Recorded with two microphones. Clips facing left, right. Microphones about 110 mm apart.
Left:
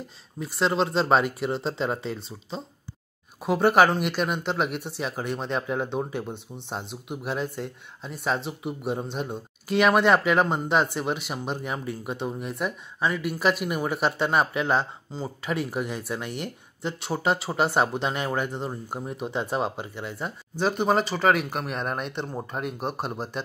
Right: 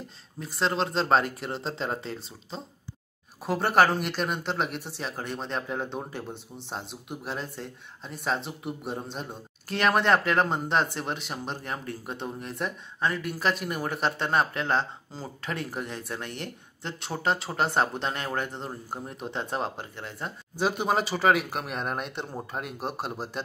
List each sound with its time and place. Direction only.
0.4 s speech: 5° left (ahead or behind)